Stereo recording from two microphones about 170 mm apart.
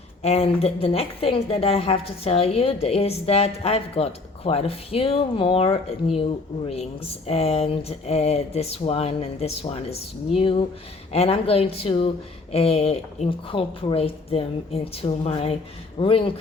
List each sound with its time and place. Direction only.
0.2 s a woman's voice: 35° left (ahead or behind)